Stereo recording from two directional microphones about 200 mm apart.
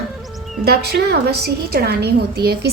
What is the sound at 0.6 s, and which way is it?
A woman's voice, 55° right (ahead or behind).